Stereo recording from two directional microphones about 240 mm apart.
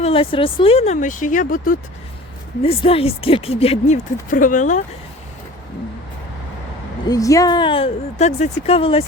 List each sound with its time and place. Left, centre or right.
0.0 s speech: left
2.6 s speech: left
7.1 s speech: centre